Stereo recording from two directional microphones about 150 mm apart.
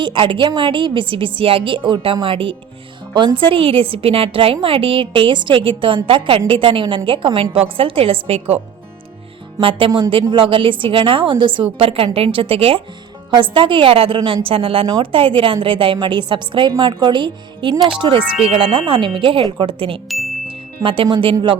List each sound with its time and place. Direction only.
0.0 s a woman's voice: 35° right (ahead or behind)
9.6 s a woman's voice: 35° right (ahead or behind)
14.2 s speech: 25° right (ahead or behind)
14.4 s a woman's voice: 35° right (ahead or behind)
17.7 s speech: centre (ahead or behind)
18.0 s a woman's voice: 35° right (ahead or behind)
20.1 s speech: centre (ahead or behind)
20.5 s speech: 35° right (ahead or behind)